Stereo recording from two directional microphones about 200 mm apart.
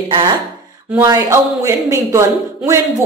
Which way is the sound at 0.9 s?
15° right (ahead or behind).